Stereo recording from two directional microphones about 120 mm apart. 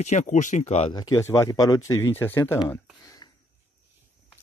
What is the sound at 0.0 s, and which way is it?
Speech, 85° left.